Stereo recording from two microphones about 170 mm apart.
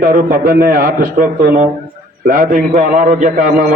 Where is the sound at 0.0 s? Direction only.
55° right (ahead or behind).